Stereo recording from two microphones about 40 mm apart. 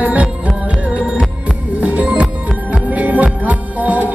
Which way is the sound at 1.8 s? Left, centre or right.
Right.